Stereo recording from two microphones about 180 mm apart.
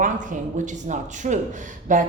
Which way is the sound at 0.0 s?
45° right (ahead or behind).